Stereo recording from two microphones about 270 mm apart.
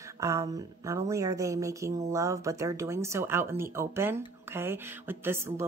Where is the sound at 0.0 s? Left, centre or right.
Centre.